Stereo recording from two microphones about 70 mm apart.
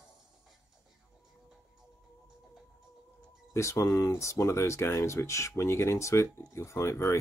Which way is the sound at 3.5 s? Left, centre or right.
Left.